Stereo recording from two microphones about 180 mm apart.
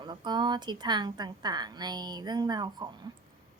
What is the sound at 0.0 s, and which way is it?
A woman's voice, 25° right (ahead or behind).